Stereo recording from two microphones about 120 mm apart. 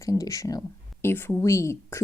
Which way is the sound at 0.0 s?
30° left (ahead or behind).